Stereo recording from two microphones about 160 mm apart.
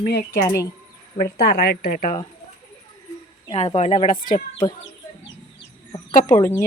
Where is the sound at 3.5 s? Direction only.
40° left (ahead or behind).